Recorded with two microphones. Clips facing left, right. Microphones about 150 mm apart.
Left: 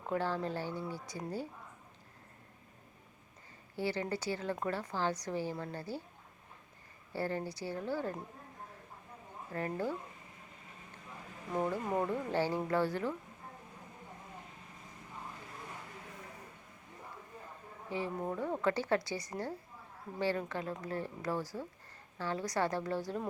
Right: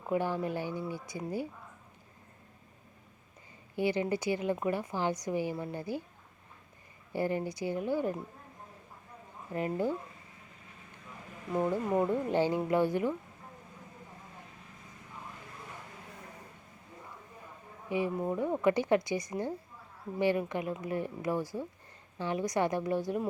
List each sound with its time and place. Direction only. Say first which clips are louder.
0.1 s a woman's voice: right 3 dB; 15° right (ahead or behind)
3.8 s a woman's voice: right 5 dB; 15° right (ahead or behind)
7.1 s a woman's voice: right 5 dB; 15° right (ahead or behind)
9.5 s a woman's voice: right 5 dB; 15° right (ahead or behind)
11.7 s a woman's voice: right 5 dB; 15° right (ahead or behind)
17.8 s a woman's voice: right 5 dB; 15° right (ahead or behind)